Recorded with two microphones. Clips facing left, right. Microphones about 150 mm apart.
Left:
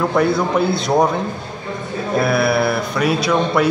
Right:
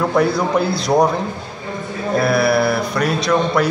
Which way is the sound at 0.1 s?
Centre (ahead or behind).